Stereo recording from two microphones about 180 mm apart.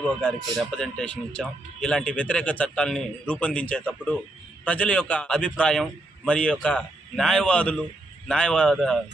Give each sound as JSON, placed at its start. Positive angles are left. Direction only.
{"t": 0.2, "sound": "speech", "side_deg": 5}